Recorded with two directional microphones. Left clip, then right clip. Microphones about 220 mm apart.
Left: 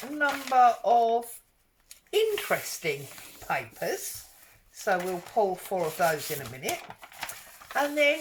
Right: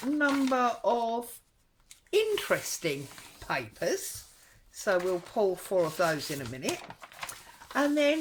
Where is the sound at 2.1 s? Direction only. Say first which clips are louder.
Left 1 dB; 50° right (ahead or behind).